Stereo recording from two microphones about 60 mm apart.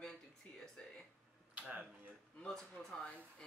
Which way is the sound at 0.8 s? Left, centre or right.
Centre.